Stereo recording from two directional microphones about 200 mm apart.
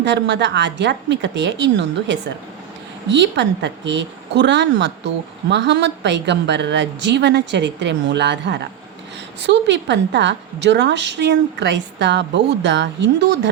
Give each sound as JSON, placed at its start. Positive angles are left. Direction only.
{"t": 0.0, "sound": "a woman's voice", "side_deg": -60}